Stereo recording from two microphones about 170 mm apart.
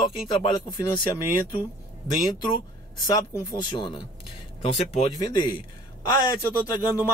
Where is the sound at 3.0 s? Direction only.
25° left (ahead or behind).